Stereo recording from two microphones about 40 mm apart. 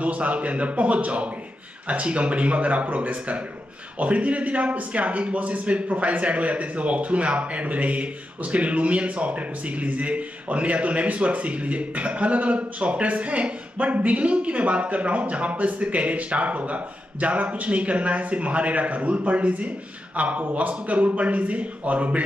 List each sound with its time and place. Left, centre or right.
0.0 s a man's voice: right